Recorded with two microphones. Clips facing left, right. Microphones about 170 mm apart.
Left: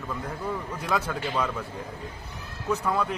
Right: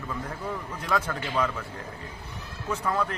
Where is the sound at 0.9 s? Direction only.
10° left (ahead or behind).